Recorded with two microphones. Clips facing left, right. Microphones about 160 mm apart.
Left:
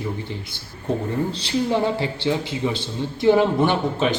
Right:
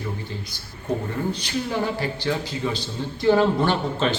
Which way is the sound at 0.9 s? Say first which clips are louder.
Left 2 dB; 25° left (ahead or behind).